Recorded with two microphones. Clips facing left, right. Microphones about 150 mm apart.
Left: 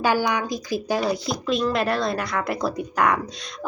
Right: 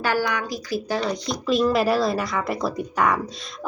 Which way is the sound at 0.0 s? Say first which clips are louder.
Left 2 dB; 15° left (ahead or behind).